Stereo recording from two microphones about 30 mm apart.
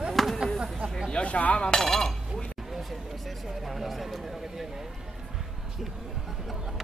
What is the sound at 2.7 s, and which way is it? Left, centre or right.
Speech, centre.